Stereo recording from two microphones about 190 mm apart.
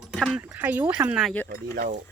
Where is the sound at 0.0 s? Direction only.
5° right (ahead or behind).